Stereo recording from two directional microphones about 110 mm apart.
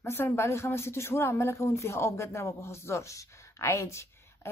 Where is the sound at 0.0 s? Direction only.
20° left (ahead or behind).